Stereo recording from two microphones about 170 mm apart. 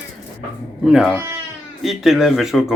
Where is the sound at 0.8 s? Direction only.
Centre (ahead or behind).